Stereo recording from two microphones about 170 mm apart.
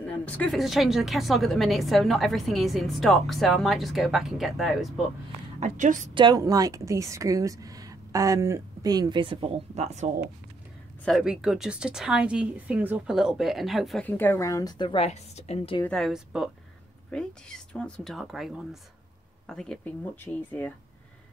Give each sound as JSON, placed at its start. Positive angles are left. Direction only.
{"t": 0.0, "sound": "a woman's voice", "side_deg": 10}
{"t": 5.6, "sound": "a woman's voice", "side_deg": -45}
{"t": 6.1, "sound": "speech", "side_deg": -25}
{"t": 11.1, "sound": "a woman's voice", "side_deg": 0}
{"t": 14.0, "sound": "a woman's voice", "side_deg": 10}
{"t": 15.8, "sound": "a woman's voice", "side_deg": 5}